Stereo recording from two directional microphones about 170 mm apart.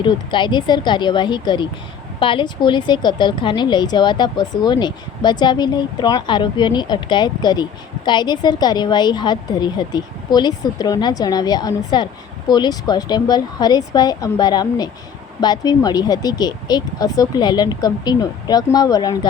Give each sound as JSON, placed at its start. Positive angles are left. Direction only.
{"t": 0.0, "sound": "a woman's voice", "side_deg": 25}